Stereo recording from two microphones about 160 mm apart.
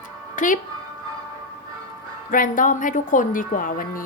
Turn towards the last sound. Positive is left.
turn(degrees=60)  # may be behind; listen again after turning